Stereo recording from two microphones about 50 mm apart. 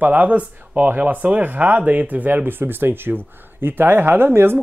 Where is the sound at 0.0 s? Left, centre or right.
Right.